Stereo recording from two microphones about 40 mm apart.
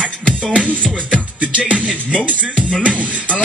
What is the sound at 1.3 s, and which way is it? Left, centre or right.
Music, right.